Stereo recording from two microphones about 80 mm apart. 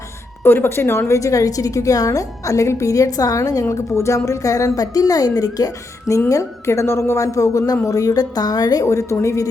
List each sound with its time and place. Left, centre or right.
0.4 s a woman's voice: left